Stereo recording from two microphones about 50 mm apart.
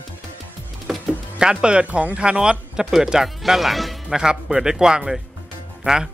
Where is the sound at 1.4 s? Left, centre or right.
Centre.